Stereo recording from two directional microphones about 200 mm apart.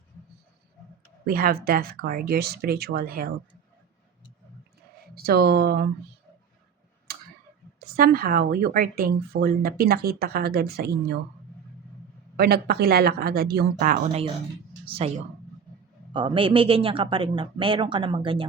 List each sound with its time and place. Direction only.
1.2 s speech: 45° right (ahead or behind)
5.1 s speech: 50° right (ahead or behind)
7.1 s tick-tock: 50° right (ahead or behind)
7.8 s speech: 45° right (ahead or behind)
12.4 s speech: 50° right (ahead or behind)
14.8 s speech: 30° right (ahead or behind)
16.1 s speech: 25° right (ahead or behind)